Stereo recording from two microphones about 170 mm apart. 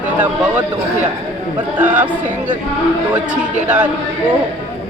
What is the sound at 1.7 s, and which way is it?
Speech, 10° right (ahead or behind).